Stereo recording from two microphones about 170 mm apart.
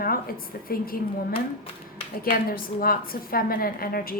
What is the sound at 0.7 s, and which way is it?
Speech, 60° left (ahead or behind).